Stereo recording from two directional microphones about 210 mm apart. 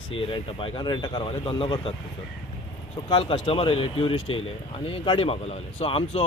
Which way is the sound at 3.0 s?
25° left (ahead or behind).